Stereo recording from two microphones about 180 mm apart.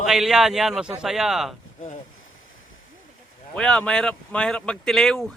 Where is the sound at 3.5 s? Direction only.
5° left (ahead or behind).